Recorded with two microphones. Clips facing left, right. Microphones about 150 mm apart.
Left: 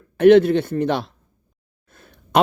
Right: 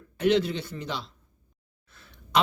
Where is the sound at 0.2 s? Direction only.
55° left (ahead or behind).